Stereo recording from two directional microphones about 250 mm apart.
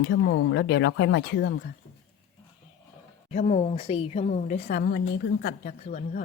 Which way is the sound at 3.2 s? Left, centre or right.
Left.